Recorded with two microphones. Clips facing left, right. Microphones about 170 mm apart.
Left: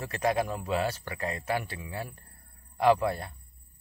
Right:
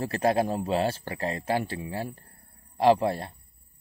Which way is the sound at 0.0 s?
30° right (ahead or behind).